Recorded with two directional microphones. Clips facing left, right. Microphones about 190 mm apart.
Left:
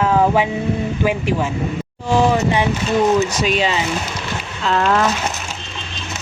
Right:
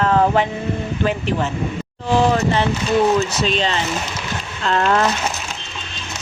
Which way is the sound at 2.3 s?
15° left (ahead or behind).